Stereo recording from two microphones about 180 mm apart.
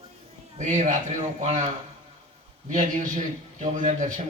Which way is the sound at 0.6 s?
40° right (ahead or behind).